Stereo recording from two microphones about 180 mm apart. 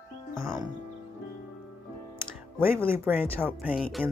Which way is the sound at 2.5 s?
10° right (ahead or behind).